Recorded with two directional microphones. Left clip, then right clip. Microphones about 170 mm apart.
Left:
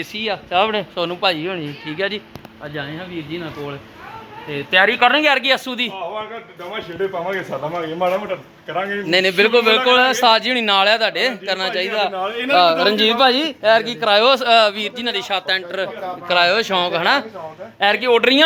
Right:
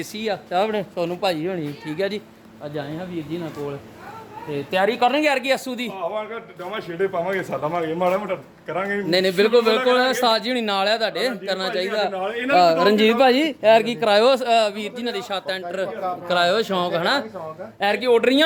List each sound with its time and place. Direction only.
0.0 s a man's voice: 15° right (ahead or behind)
4.5 s a man's voice: 5° right (ahead or behind)
7.8 s a man's voice: 25° right (ahead or behind)
12.5 s speech: 40° right (ahead or behind)
14.3 s a man's voice: 15° right (ahead or behind)